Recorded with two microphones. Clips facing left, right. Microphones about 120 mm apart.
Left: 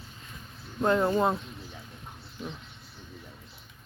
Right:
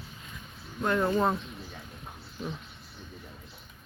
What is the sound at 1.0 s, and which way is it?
Speech, 10° left (ahead or behind).